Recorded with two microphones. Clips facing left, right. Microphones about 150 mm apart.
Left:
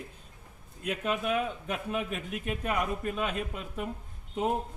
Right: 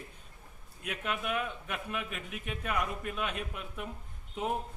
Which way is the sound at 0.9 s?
Centre (ahead or behind).